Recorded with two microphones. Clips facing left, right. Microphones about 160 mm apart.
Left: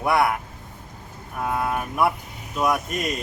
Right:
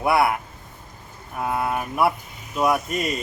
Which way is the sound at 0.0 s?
5° right (ahead or behind).